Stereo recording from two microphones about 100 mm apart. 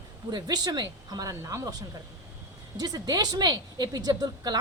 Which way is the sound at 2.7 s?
40° right (ahead or behind).